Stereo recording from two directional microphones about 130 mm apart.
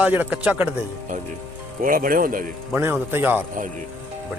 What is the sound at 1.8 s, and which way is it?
Speech, 90° right.